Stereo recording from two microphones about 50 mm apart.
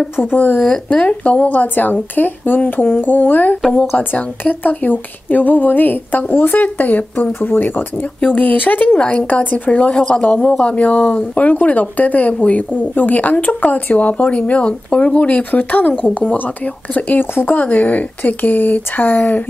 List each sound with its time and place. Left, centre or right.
0.1 s a woman's voice: left
0.8 s a woman's voice: left